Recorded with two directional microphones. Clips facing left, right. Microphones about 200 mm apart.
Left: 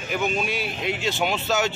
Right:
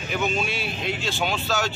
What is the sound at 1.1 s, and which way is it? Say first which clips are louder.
Speech: left 2 dB; 20° left (ahead or behind).